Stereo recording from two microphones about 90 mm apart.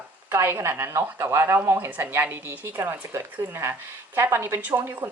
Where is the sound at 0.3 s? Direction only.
30° right (ahead or behind).